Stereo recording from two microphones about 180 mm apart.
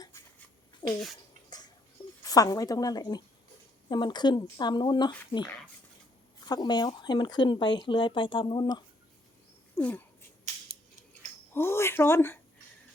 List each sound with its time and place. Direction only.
0.8 s speech: 25° left (ahead or behind)
2.2 s speech: 20° left (ahead or behind)
6.4 s speech: 25° left (ahead or behind)
9.7 s a sound: 10° left (ahead or behind)
11.5 s speech: 15° left (ahead or behind)